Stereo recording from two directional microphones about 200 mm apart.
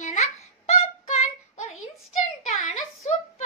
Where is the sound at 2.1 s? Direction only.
35° left (ahead or behind).